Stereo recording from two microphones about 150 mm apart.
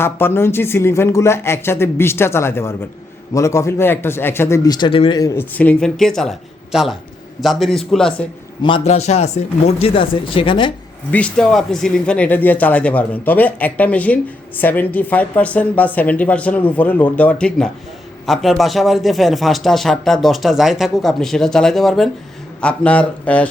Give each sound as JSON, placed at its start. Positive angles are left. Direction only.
{"t": 0.0, "sound": "speech", "side_deg": 15}
{"t": 5.2, "sound": "speech", "side_deg": 20}
{"t": 5.5, "sound": "a man's voice", "side_deg": 5}
{"t": 8.6, "sound": "speech", "side_deg": 35}
{"t": 8.9, "sound": "speech", "side_deg": 45}
{"t": 11.1, "sound": "a man's voice", "side_deg": 5}